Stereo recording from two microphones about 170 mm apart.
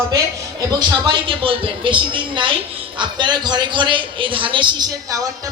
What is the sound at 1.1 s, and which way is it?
Speech, 30° right (ahead or behind).